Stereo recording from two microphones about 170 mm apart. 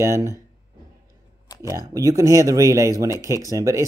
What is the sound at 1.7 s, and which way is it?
A man's voice, 20° right (ahead or behind).